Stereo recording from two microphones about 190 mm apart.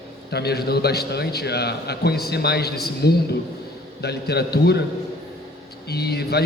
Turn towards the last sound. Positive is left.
turn(degrees=55)  # may be behind; listen again after turning